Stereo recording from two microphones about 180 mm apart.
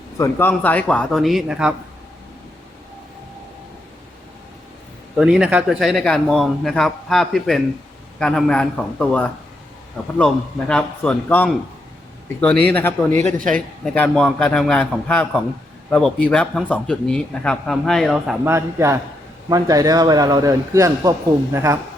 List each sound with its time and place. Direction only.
0.2 s a man's voice: 10° left (ahead or behind); by 1.7 s 5° right (ahead or behind)
5.1 s a man's voice: 5° right (ahead or behind)
13.1 s a man's voice: 45° right (ahead or behind)
13.8 s a man's voice: 5° left (ahead or behind)
18.4 s a man's voice: 15° right (ahead or behind)